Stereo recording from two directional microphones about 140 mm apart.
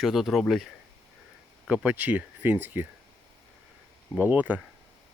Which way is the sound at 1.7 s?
10° right (ahead or behind).